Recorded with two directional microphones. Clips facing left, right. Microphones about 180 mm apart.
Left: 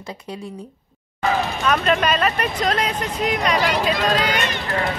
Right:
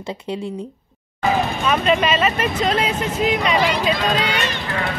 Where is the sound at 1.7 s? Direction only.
Centre (ahead or behind).